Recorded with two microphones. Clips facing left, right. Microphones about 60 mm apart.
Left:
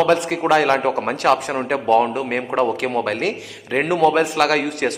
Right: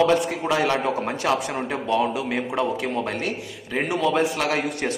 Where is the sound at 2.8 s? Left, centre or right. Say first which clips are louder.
Left 5 dB; left.